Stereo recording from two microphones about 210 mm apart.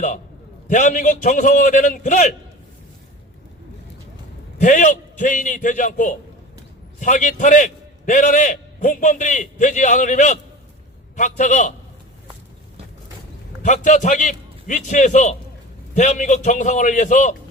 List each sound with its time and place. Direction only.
0.7 s a man's voice: 40° left (ahead or behind)
4.6 s a man's voice: 35° left (ahead or behind)
13.6 s a man's voice: 35° left (ahead or behind)